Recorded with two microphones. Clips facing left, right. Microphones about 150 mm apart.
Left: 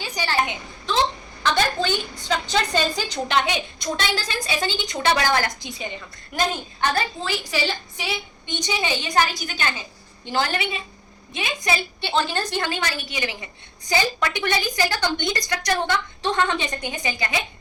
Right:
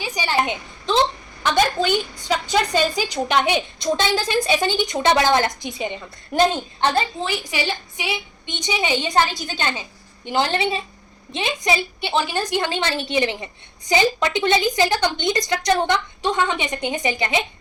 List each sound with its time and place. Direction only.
0.0 s a woman's voice: 15° right (ahead or behind)
3.5 s a woman's voice: 20° right (ahead or behind)